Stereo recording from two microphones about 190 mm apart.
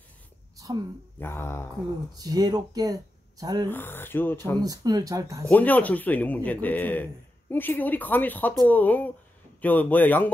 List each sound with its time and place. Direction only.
1.2 s a man's voice: 15° left (ahead or behind)
2.1 s speech: 20° right (ahead or behind)
3.6 s a man's voice: 10° left (ahead or behind)
4.6 s speech: 20° right (ahead or behind)
5.5 s a man's voice: 10° left (ahead or behind)